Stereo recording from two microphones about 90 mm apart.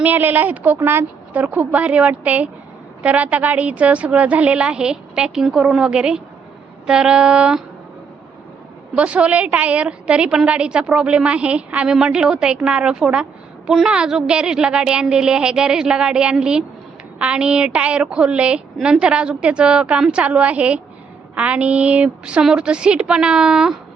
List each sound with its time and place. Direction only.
0.0 s a woman's voice: 20° right (ahead or behind)
9.0 s a woman's voice: 15° right (ahead or behind)